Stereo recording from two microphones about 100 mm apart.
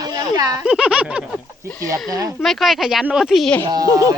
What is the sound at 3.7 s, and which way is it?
Speech, 35° right (ahead or behind).